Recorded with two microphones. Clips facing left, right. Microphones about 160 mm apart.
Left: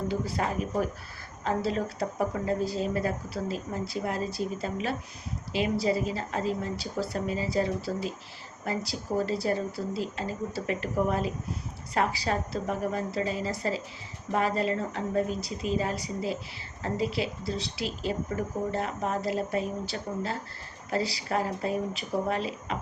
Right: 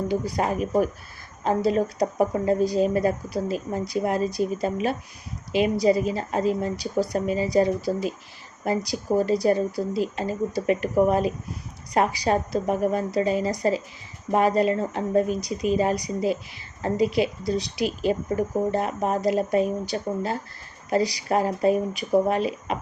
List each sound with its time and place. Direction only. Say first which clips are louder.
0.1 s speech: right 5 dB; 15° right (ahead or behind)